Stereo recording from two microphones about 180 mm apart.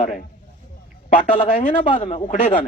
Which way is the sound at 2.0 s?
40° left (ahead or behind).